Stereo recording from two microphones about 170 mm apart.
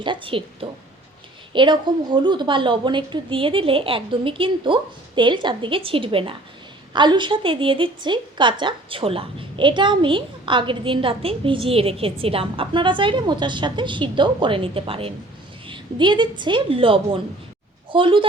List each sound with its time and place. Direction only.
0.0 s a woman's voice: 30° right (ahead or behind)